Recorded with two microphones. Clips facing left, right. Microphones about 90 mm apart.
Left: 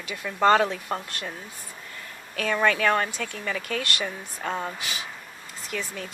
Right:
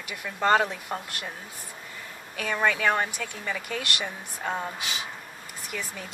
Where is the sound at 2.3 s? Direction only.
10° right (ahead or behind).